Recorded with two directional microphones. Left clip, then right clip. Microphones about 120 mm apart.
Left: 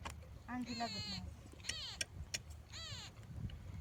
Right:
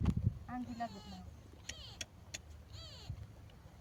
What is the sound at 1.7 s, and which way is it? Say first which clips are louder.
Vehicle: left 4 dB; 40° left (ahead or behind).